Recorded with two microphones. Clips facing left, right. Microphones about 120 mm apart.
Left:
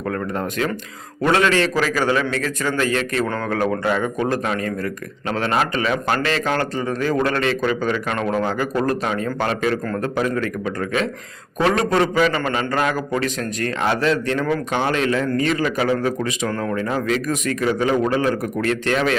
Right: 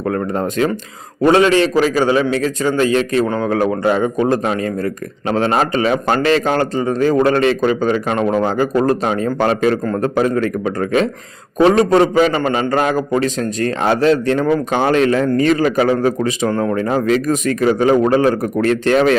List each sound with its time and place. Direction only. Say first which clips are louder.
0.1 s a man's voice: right 5 dB; 30° right (ahead or behind)